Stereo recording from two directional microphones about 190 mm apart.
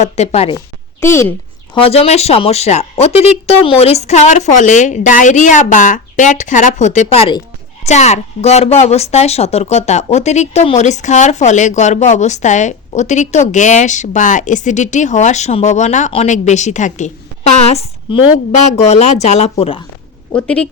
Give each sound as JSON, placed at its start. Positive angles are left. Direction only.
{"t": 0.0, "sound": "a woman's voice", "side_deg": 35}
{"t": 1.0, "sound": "speech", "side_deg": 15}
{"t": 1.7, "sound": "a woman's voice", "side_deg": 30}
{"t": 20.3, "sound": "speech", "side_deg": 5}